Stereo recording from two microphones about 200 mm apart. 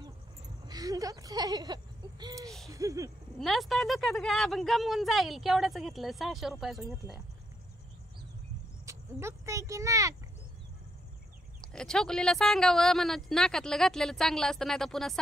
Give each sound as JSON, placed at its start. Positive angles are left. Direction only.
{"t": 0.7, "sound": "a sound", "side_deg": -20}
{"t": 3.3, "sound": "speech", "side_deg": 0}
{"t": 8.8, "sound": "speech", "side_deg": -15}
{"t": 11.6, "sound": "speech", "side_deg": 5}